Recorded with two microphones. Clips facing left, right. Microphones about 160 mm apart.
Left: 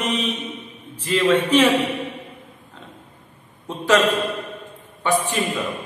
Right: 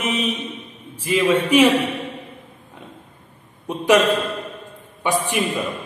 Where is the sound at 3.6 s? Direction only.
15° right (ahead or behind).